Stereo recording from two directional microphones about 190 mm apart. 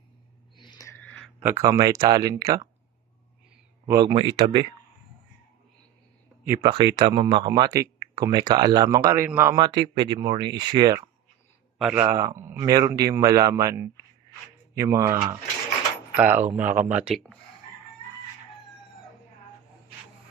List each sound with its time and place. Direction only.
0.5 s a sound: 25° left (ahead or behind); by 1.3 s 10° left (ahead or behind)
1.4 s speech: 15° right (ahead or behind)
3.8 s speech: 20° right (ahead or behind)
6.4 s speech: 15° right (ahead or behind)
9.6 s speech: 25° right (ahead or behind)
11.8 s a man's voice: 10° right (ahead or behind)